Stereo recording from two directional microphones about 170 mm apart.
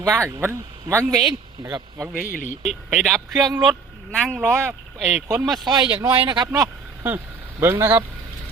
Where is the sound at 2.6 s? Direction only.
Centre (ahead or behind).